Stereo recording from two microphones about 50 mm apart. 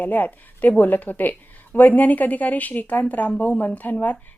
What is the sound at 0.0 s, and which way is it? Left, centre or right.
A woman's voice, left.